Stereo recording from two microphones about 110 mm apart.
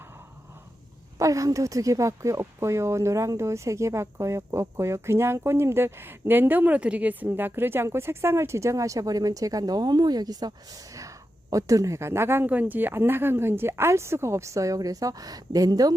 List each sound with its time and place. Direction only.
1.2 s a woman's voice: 30° right (ahead or behind)